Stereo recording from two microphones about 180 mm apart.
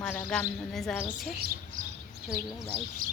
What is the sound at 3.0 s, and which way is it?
Speech, 50° right (ahead or behind).